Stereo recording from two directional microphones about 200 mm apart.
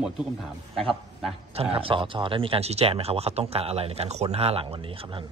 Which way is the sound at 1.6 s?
30° right (ahead or behind).